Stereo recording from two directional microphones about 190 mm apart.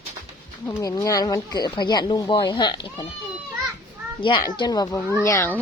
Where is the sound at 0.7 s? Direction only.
15° left (ahead or behind).